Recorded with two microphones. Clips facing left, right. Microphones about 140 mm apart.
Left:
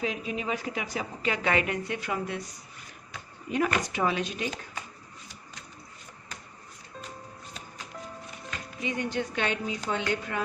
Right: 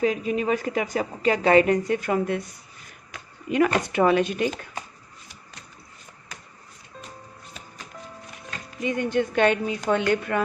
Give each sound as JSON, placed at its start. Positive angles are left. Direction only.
{"t": 0.0, "sound": "a woman's voice", "side_deg": -45}
{"t": 3.5, "sound": "speech", "side_deg": -75}
{"t": 3.8, "sound": "speech", "side_deg": -55}
{"t": 8.4, "sound": "speech", "side_deg": -50}